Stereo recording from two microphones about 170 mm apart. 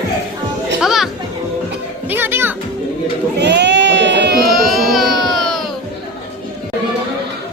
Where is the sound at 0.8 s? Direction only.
Centre (ahead or behind).